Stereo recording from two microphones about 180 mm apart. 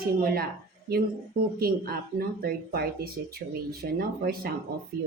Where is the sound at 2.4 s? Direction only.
55° right (ahead or behind).